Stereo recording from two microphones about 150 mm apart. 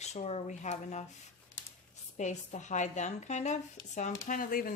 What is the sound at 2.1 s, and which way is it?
Speech, 50° left (ahead or behind).